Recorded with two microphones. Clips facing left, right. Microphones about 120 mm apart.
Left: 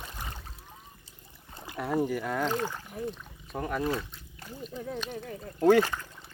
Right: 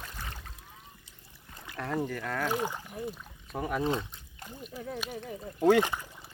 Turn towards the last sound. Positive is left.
turn(degrees=-15)  # may be behind; listen again after turning